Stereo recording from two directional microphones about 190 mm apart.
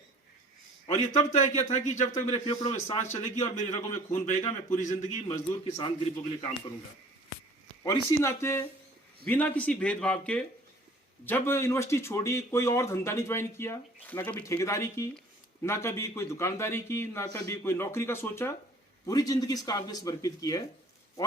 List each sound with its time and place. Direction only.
0.9 s a man's voice: 35° left (ahead or behind)
7.9 s speech: 15° left (ahead or behind)